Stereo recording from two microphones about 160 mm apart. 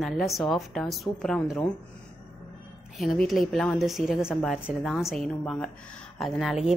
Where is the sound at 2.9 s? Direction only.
Centre (ahead or behind).